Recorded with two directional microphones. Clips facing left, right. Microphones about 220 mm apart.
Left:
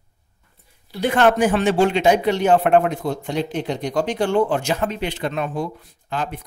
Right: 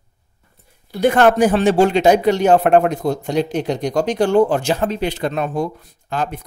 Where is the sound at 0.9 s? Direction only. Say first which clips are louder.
Right 4 dB; 45° right (ahead or behind).